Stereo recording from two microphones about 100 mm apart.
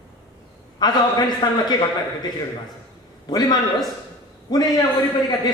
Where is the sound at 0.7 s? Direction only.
45° left (ahead or behind).